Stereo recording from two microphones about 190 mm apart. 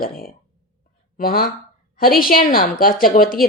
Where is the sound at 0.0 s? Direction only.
50° left (ahead or behind).